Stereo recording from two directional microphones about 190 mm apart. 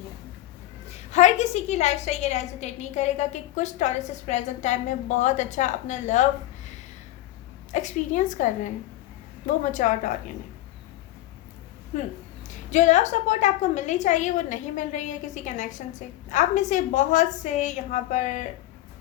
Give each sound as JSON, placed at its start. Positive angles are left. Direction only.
{"t": 1.1, "sound": "a woman's voice", "side_deg": 40}
{"t": 7.7, "sound": "a woman's voice", "side_deg": 40}
{"t": 11.9, "sound": "a woman's voice", "side_deg": 35}